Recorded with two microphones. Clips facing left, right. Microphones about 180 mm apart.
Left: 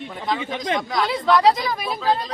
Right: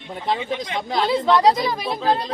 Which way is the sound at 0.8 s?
25° right (ahead or behind).